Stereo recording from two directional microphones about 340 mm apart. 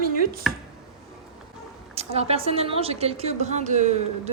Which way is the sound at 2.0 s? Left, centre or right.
Centre.